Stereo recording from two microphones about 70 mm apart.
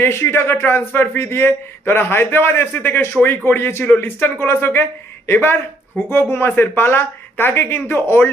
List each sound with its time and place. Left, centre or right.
0.0 s speech: left